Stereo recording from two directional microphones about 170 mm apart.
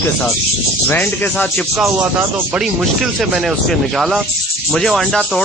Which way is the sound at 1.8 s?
10° right (ahead or behind).